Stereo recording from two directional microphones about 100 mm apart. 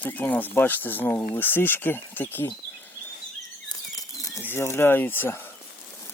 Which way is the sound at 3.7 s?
35° left (ahead or behind).